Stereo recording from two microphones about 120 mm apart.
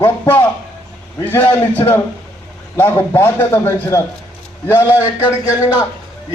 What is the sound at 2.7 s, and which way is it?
A man's voice, 20° left (ahead or behind).